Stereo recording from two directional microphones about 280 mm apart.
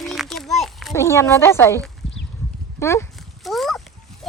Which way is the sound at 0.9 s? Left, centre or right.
Centre.